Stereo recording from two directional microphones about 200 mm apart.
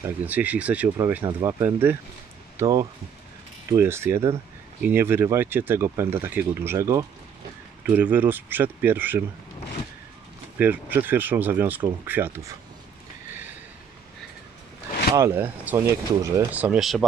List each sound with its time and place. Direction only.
0.0 s speech: 10° right (ahead or behind)
1.2 s speech: 20° right (ahead or behind)
10.6 s speech: 10° right (ahead or behind)
15.1 s speech: 10° right (ahead or behind)